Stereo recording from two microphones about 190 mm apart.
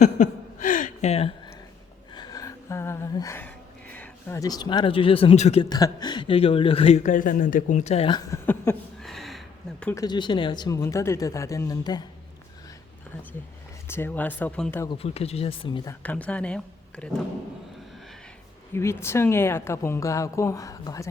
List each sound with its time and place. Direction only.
0.0 s chuckle: 40° left (ahead or behind)
2.1 s a sound: 20° left (ahead or behind)
5.6 s speech: 20° left (ahead or behind)
8.3 s speech: 15° left (ahead or behind)
9.0 s a sound: centre (ahead or behind)
9.8 s a woman's voice: 15° left (ahead or behind)
13.8 s a woman's voice: 10° left (ahead or behind)
14.8 s speech: 30° left (ahead or behind)
16.0 s speech: 5° left (ahead or behind)
18.7 s a woman's voice: 15° left (ahead or behind)